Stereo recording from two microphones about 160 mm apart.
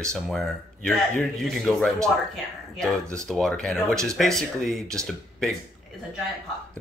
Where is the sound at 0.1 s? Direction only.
5° left (ahead or behind).